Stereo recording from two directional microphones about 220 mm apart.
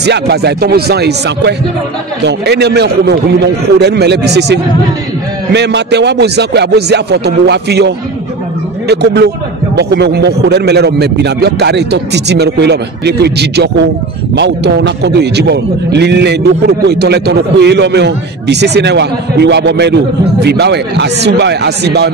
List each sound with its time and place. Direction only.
0.0 s a man's voice: 50° right (ahead or behind)